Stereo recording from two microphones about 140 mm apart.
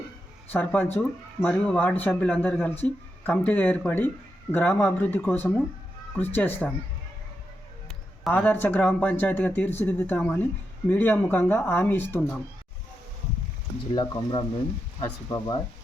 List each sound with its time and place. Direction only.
0.5 s speech: 10° left (ahead or behind)
8.4 s speech: 15° left (ahead or behind)
13.9 s speech: 35° left (ahead or behind)